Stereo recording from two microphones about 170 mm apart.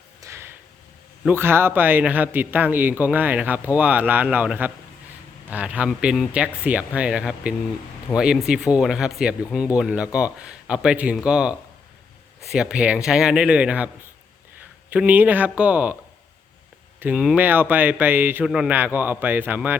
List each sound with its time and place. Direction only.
0.2 s a sound: 15° right (ahead or behind)
1.3 s speech: 15° right (ahead or behind)
17.0 s speech: 5° right (ahead or behind)